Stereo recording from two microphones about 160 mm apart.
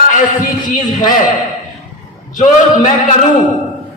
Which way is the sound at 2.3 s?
50° left (ahead or behind).